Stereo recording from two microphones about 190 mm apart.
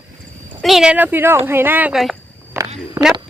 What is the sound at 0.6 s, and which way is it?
Speech, 5° right (ahead or behind).